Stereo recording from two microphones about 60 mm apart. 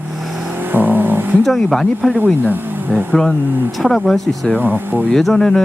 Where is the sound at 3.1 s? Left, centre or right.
Centre.